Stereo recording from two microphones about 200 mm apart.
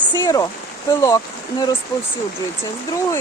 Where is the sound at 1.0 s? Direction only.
20° left (ahead or behind).